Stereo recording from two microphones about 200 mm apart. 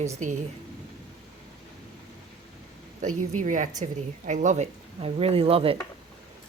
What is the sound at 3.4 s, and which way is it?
Speech, 40° right (ahead or behind).